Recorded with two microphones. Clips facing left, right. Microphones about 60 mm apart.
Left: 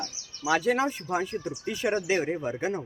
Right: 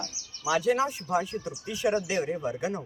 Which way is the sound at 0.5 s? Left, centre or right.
Left.